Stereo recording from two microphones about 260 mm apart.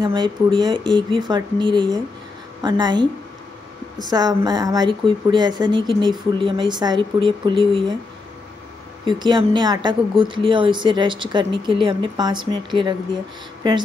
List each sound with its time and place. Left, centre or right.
0.0 s a woman's voice: centre
4.1 s a woman's voice: centre
9.0 s a woman's voice: centre